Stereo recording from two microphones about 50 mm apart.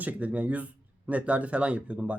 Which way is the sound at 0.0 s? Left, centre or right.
Right.